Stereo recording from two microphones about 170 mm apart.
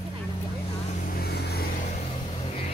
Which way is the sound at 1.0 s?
65° left (ahead or behind).